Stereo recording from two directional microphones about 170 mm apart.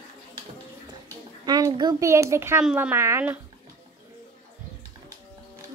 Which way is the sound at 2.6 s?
5° right (ahead or behind).